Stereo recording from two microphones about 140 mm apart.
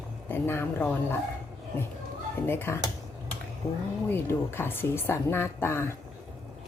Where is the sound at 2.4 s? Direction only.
15° left (ahead or behind).